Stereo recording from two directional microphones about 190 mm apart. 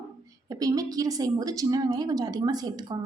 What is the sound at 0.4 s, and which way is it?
A woman's voice, 20° right (ahead or behind).